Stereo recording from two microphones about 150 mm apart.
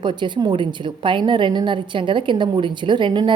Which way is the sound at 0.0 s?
30° right (ahead or behind).